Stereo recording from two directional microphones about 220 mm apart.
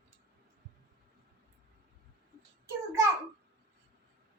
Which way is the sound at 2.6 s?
15° right (ahead or behind).